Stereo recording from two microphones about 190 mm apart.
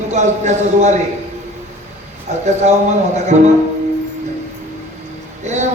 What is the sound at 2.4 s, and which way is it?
Speech, 35° right (ahead or behind).